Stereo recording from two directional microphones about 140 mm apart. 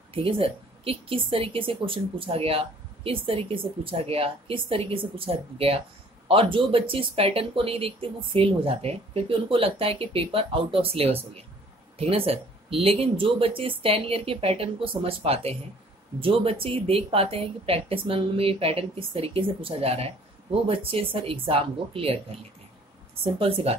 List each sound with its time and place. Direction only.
0.1 s a woman's voice: 40° right (ahead or behind)
23.2 s speech: 45° right (ahead or behind)